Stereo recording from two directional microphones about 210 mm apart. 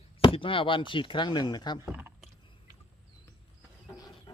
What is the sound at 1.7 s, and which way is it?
Speech, 10° right (ahead or behind).